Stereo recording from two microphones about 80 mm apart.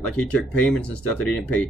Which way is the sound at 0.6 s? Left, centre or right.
Centre.